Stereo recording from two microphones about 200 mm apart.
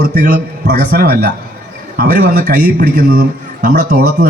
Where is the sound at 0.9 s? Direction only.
50° right (ahead or behind).